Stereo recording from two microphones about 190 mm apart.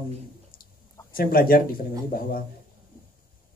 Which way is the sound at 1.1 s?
50° left (ahead or behind).